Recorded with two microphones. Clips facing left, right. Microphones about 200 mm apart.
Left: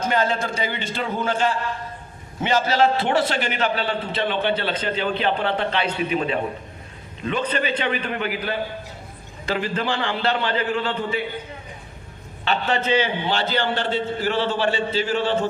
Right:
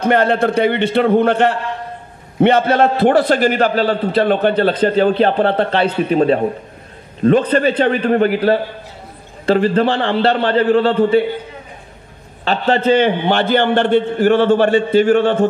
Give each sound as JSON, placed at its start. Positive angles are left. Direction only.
{"t": 0.0, "sound": "a man's voice", "side_deg": -60}
{"t": 3.5, "sound": "a man's voice", "side_deg": -35}
{"t": 12.4, "sound": "a man's voice", "side_deg": -35}
{"t": 12.9, "sound": "a man's voice", "side_deg": -60}